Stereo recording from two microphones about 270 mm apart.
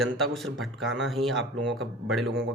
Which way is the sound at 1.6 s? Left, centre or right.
Right.